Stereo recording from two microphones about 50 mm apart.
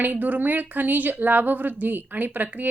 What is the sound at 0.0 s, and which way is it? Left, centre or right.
A woman's voice, right.